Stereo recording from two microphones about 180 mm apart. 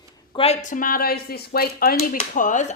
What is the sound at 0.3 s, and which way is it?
Speech, 35° left (ahead or behind).